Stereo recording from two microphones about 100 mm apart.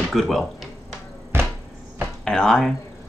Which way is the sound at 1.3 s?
25° right (ahead or behind).